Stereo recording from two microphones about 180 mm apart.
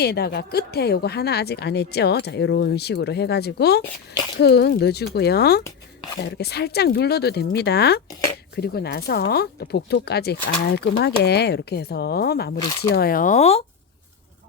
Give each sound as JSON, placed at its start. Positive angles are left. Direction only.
{"t": 0.0, "sound": "speech", "side_deg": 60}